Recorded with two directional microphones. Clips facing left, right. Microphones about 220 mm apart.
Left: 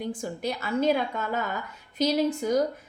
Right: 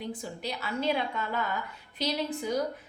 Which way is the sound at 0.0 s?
50° left (ahead or behind).